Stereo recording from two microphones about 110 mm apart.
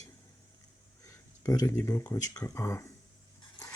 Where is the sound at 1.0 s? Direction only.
30° left (ahead or behind).